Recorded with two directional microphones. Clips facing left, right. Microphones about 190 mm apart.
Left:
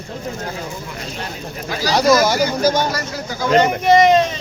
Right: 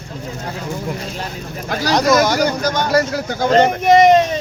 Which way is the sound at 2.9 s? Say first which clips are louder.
Right 8 dB; 60° right (ahead or behind).